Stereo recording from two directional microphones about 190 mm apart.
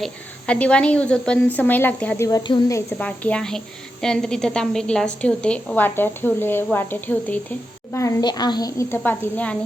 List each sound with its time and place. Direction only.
0.0 s a woman's voice: 5° left (ahead or behind)